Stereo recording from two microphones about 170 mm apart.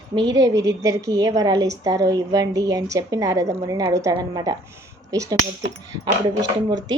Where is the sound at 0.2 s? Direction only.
25° right (ahead or behind).